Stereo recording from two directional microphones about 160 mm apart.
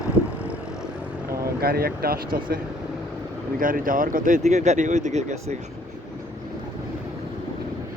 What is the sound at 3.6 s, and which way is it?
Speech, 60° right (ahead or behind).